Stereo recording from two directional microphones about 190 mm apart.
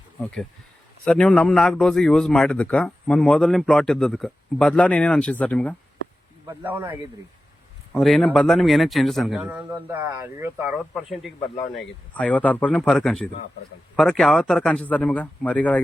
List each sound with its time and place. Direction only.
0.2 s a man's voice: 5° left (ahead or behind)
6.5 s speech: 10° right (ahead or behind)
7.9 s a man's voice: centre (ahead or behind)
10.7 s a man's voice: centre (ahead or behind)
11.3 s speech: 30° left (ahead or behind)
12.1 s a man's voice: 5° left (ahead or behind)